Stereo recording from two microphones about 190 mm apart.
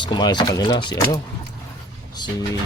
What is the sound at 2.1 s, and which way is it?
Speech, 20° left (ahead or behind).